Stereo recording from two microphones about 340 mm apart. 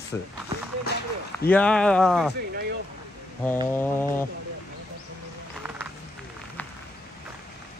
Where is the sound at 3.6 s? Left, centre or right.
Centre.